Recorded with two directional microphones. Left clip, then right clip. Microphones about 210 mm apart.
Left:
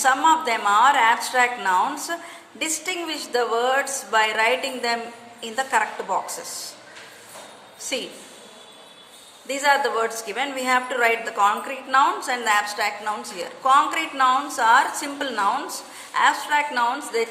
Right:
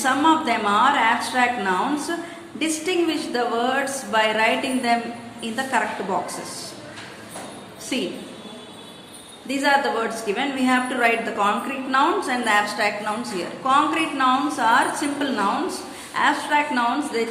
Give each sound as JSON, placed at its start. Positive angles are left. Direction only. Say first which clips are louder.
{"t": 0.0, "sound": "a woman's voice", "louder": "left 1 dB", "side_deg": 35}
{"t": 7.9, "sound": "a woman's voice", "louder": "right 2 dB", "side_deg": 35}
{"t": 9.5, "sound": "a woman's voice", "louder": "even", "side_deg": 35}